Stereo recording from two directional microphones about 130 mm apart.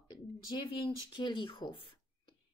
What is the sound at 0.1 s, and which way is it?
Speech, 35° left (ahead or behind).